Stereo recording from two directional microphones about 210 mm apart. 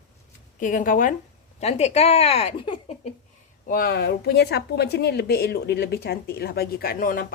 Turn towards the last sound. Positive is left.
turn(degrees=40)  # may be behind; listen again after turning